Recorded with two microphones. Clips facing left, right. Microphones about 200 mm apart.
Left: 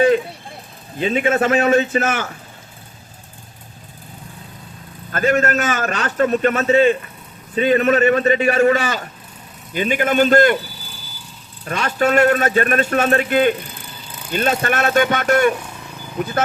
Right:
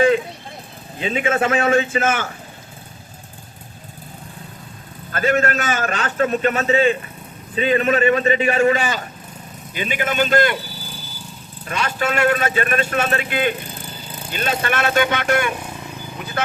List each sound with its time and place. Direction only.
0.9 s a man's voice: 40° left (ahead or behind)
5.1 s a man's voice: 45° left (ahead or behind)
11.6 s a man's voice: 45° left (ahead or behind)